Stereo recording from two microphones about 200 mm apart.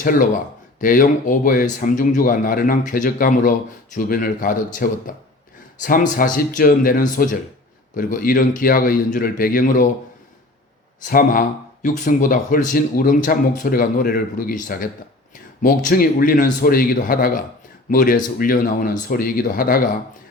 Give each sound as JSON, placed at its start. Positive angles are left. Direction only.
{"t": 0.0, "sound": "speech", "side_deg": 45}
{"t": 11.0, "sound": "speech", "side_deg": 45}